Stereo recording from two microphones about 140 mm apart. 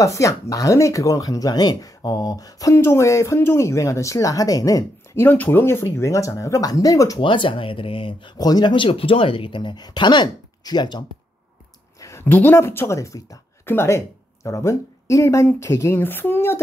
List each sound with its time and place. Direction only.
0.0 s speech: 20° left (ahead or behind)
7.2 s speech: 35° left (ahead or behind)
12.0 s speech: 20° left (ahead or behind)